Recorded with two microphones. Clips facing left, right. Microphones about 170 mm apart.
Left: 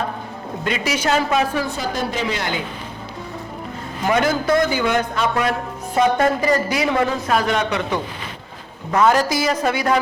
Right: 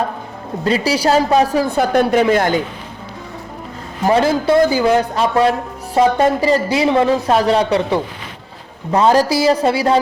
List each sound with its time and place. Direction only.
0.6 s a man's voice: 35° right (ahead or behind)
1.6 s a woman's voice: 60° right (ahead or behind)
4.0 s a man's voice: 30° right (ahead or behind)